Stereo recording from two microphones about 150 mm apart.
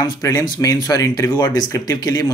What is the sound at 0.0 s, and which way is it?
Speech, 25° left (ahead or behind).